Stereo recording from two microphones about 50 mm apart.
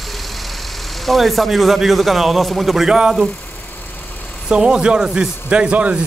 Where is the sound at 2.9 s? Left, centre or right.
Centre.